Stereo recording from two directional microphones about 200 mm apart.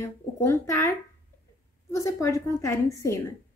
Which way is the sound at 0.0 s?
15° left (ahead or behind).